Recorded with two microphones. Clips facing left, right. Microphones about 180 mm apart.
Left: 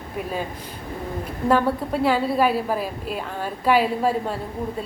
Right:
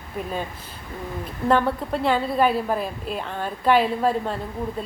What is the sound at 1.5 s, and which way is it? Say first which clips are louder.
A woman's voice: left 1 dB; 5° left (ahead or behind).